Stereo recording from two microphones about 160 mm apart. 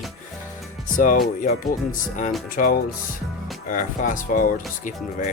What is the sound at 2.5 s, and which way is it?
Speech, 60° left (ahead or behind).